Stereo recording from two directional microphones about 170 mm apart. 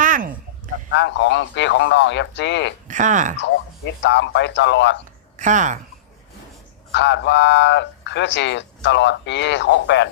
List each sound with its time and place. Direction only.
0.0 s a sound: 50° right (ahead or behind)
0.9 s speech: 90° left
2.8 s speech: 45° right (ahead or behind)
3.4 s speech: 90° left
5.4 s speech: 45° right (ahead or behind)
6.9 s speech: 90° left